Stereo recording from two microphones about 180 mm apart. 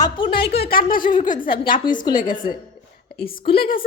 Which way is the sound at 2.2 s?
45° left (ahead or behind).